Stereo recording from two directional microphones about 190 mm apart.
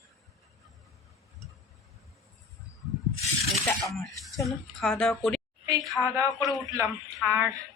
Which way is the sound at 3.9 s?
Centre (ahead or behind).